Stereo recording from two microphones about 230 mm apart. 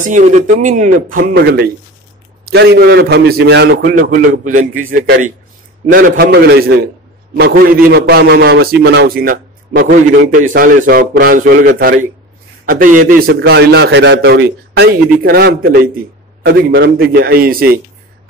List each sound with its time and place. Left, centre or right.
0.1 s a man's voice: right